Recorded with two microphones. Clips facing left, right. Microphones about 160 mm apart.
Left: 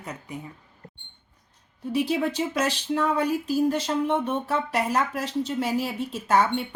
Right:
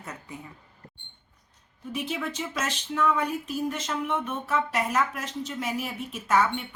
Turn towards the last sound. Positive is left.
turn(degrees=30)  # may be behind; listen again after turning